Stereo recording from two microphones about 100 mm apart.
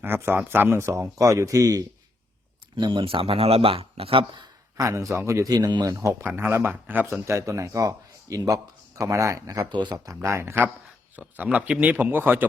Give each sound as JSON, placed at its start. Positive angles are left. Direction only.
{"t": 0.0, "sound": "speech", "side_deg": -25}
{"t": 2.7, "sound": "speech", "side_deg": -55}
{"t": 4.8, "sound": "speech", "side_deg": -30}
{"t": 5.9, "sound": "speech", "side_deg": -30}
{"t": 9.9, "sound": "speech", "side_deg": -30}
{"t": 11.2, "sound": "speech", "side_deg": -15}